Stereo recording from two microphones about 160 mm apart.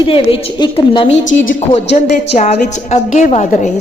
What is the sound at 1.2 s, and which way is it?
A woman's voice, 50° left (ahead or behind).